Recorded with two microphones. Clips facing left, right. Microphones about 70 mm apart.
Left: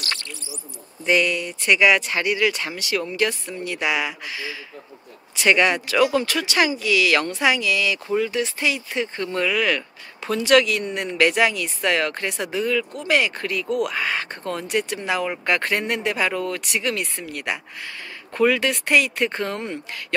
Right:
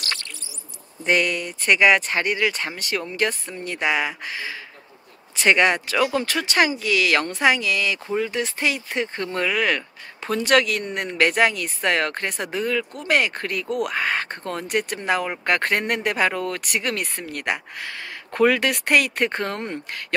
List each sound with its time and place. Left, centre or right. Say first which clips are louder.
1.0 s speech: left 1 dB; right